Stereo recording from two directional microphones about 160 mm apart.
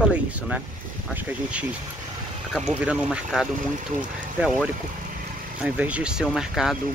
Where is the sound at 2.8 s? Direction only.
5° right (ahead or behind).